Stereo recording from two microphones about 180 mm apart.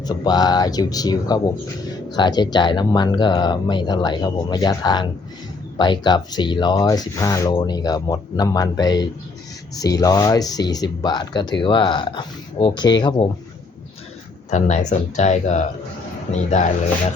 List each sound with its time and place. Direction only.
0.0 s speech: 20° left (ahead or behind)
14.5 s speech: 40° left (ahead or behind)